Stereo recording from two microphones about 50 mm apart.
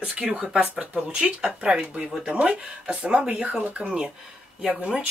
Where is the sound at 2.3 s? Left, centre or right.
Right.